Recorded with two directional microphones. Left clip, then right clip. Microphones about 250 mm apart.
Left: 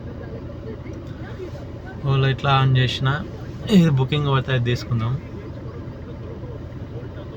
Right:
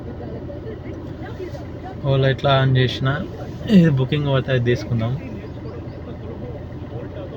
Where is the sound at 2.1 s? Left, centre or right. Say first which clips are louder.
Right 3 dB; centre.